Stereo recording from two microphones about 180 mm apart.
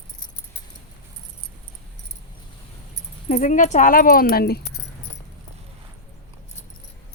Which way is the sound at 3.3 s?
45° left (ahead or behind).